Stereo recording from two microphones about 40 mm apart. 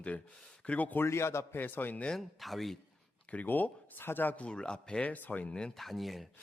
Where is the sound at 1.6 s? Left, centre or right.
Left.